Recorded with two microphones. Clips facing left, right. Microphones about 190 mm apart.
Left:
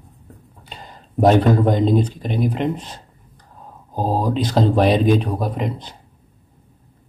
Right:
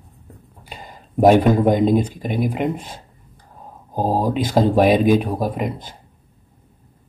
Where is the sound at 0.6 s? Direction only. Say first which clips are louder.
Right 1 dB; 10° right (ahead or behind).